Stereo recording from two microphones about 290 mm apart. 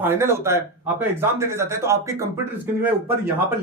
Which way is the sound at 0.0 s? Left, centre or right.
Centre.